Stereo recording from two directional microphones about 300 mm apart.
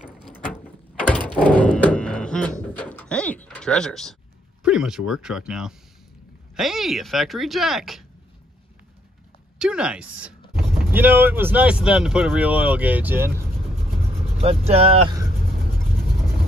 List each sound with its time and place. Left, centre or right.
0.3 s a sound: centre
4.6 s speech: centre
9.6 s speech: centre
14.4 s speech: centre